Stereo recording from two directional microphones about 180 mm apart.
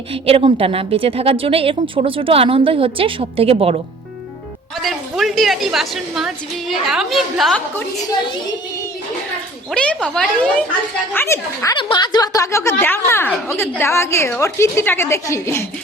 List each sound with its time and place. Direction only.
0.1 s a woman's voice: 30° right (ahead or behind)
4.8 s a woman's voice: centre (ahead or behind)
9.7 s a woman's voice: 5° left (ahead or behind)
11.8 s a woman's voice: 25° left (ahead or behind)